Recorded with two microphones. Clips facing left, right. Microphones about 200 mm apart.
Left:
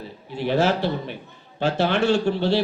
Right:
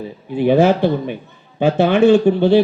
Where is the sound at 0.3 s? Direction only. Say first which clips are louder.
Right 8 dB; 55° right (ahead or behind).